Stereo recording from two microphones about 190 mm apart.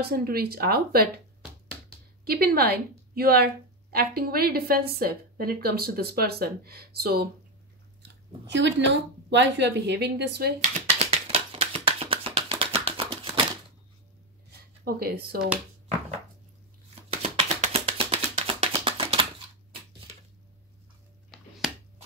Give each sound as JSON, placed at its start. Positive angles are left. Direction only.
{"t": 0.0, "sound": "a woman's voice", "side_deg": -55}
{"t": 2.2, "sound": "a woman's voice", "side_deg": -55}
{"t": 8.5, "sound": "a woman's voice", "side_deg": -70}
{"t": 10.9, "sound": "a sound", "side_deg": -30}
{"t": 14.9, "sound": "a woman's voice", "side_deg": -50}
{"t": 17.2, "sound": "music", "side_deg": -35}
{"t": 21.3, "sound": "a sound", "side_deg": 0}